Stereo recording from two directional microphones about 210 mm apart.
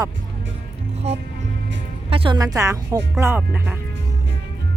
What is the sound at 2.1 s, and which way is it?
Speech, 25° right (ahead or behind).